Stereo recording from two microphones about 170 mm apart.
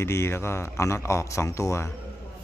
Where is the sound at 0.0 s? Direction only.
15° left (ahead or behind).